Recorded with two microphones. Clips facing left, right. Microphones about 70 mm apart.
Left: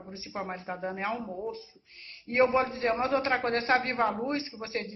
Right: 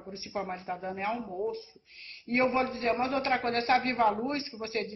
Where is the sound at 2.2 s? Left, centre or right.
Left.